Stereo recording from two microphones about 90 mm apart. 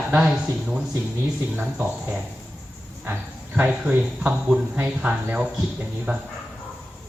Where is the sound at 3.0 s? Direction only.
25° right (ahead or behind).